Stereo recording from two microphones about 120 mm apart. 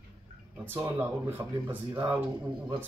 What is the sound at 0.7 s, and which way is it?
Speech, 15° right (ahead or behind).